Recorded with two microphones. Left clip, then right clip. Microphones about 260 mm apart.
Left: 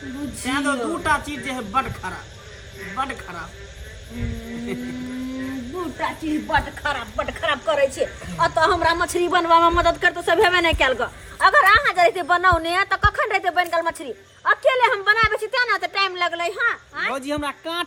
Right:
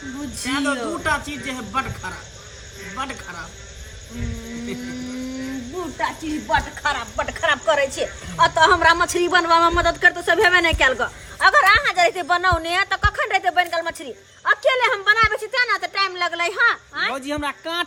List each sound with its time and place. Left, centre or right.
0.4 s speech: centre
6.0 s speech: centre
16.6 s speech: right
17.2 s speech: centre